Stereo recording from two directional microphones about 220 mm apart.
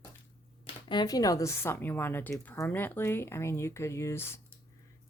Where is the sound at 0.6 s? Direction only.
20° left (ahead or behind).